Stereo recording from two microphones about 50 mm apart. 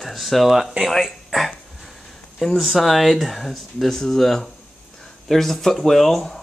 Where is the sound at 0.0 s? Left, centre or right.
Centre.